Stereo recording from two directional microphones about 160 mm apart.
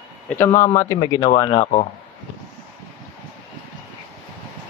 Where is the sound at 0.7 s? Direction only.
25° left (ahead or behind).